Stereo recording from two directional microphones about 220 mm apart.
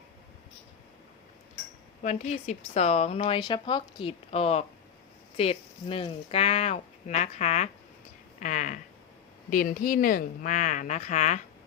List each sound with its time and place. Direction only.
2.0 s a woman's voice: 30° left (ahead or behind)